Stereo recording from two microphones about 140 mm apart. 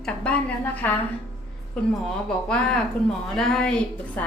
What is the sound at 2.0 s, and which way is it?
Speech, 5° left (ahead or behind).